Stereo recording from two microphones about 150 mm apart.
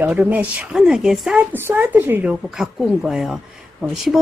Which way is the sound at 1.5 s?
15° right (ahead or behind).